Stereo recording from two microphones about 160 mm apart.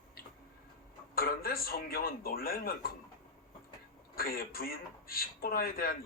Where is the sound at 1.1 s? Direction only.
65° left (ahead or behind).